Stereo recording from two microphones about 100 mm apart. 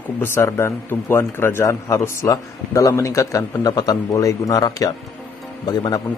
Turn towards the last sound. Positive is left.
turn(degrees=40)  # may be behind; listen again after turning